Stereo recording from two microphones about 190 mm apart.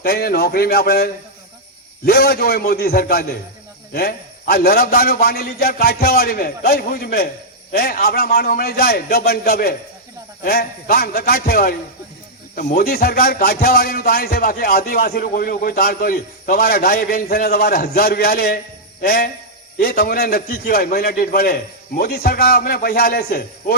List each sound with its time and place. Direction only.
0.0 s a man's voice: 55° left (ahead or behind)